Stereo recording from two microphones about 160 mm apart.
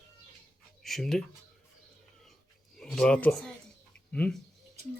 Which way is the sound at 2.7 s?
5° left (ahead or behind).